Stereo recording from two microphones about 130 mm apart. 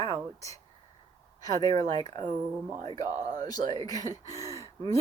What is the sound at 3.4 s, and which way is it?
Speech, 30° left (ahead or behind).